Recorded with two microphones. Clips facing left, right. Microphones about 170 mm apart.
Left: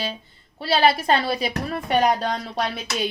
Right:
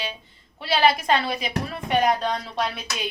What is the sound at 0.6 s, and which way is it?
A woman's voice, 30° left (ahead or behind).